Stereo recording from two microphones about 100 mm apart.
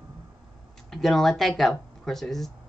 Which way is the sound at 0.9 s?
5° left (ahead or behind).